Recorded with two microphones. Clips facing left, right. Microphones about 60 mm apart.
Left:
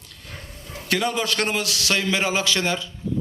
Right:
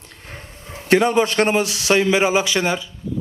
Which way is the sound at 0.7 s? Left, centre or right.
Right.